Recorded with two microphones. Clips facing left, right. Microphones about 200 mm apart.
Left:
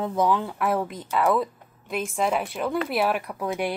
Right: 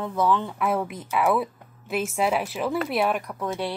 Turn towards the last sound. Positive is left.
turn(degrees=15)  # may be behind; listen again after turning